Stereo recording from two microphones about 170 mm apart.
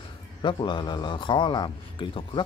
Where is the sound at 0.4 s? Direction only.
25° left (ahead or behind).